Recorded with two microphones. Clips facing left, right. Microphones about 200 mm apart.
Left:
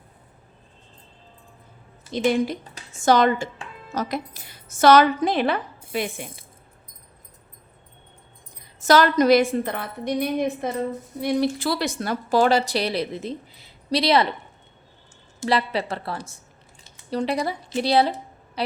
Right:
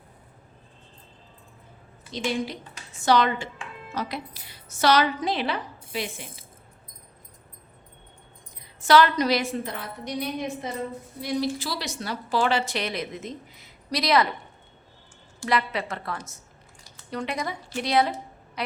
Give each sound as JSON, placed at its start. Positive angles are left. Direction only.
{"t": 2.1, "sound": "speech", "side_deg": 55}
{"t": 8.8, "sound": "a woman's voice", "side_deg": 45}
{"t": 15.4, "sound": "a woman's voice", "side_deg": 30}